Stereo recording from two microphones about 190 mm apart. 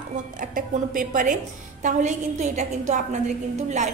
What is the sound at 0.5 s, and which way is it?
A woman's voice, 45° right (ahead or behind).